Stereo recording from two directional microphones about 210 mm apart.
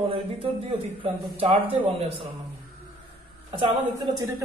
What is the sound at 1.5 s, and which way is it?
Speech, 30° right (ahead or behind).